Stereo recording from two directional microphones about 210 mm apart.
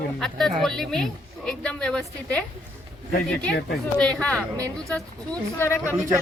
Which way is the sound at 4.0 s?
5° left (ahead or behind).